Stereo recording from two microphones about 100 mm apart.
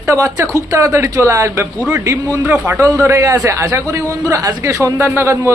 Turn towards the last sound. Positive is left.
turn(degrees=-25)  # may be behind; listen again after turning